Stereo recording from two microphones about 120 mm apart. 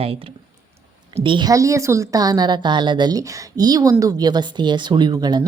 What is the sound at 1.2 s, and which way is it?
A woman's voice, 40° right (ahead or behind).